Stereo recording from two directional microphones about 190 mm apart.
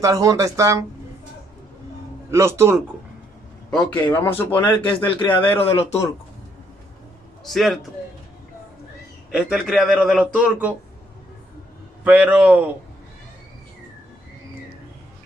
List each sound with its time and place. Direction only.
0.0 s speech: 20° right (ahead or behind)
2.3 s speech: 15° right (ahead or behind)
3.7 s a man's voice: 5° left (ahead or behind)
4.9 s a man's voice: 25° left (ahead or behind)
7.4 s a man's voice: centre (ahead or behind)
9.3 s a man's voice: 5° right (ahead or behind)
12.0 s speech: 5° right (ahead or behind)